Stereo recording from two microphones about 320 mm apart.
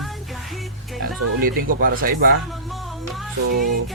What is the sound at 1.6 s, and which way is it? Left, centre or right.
Speech, right.